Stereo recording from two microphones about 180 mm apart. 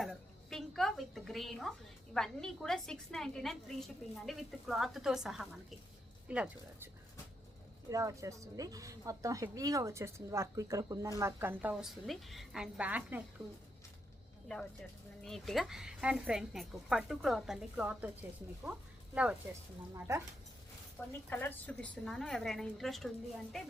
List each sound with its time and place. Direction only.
0.0 s a sound: centre (ahead or behind)
2.1 s a woman's voice: 5° left (ahead or behind)
7.9 s a woman's voice: 20° right (ahead or behind)
14.4 s a woman's voice: 5° left (ahead or behind); by 20.2 s 15° right (ahead or behind)
21.1 s a woman's voice: 10° left (ahead or behind)